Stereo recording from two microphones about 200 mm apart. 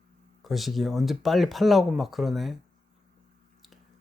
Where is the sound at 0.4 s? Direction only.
Centre (ahead or behind).